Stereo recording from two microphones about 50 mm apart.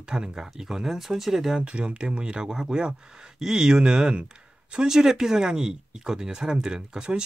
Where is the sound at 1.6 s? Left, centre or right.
Right.